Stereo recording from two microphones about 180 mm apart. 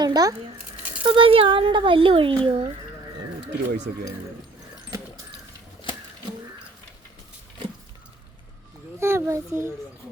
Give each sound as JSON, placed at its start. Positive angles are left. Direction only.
{"t": 0.0, "sound": "speech", "side_deg": -20}
{"t": 9.0, "sound": "a child's voice", "side_deg": -15}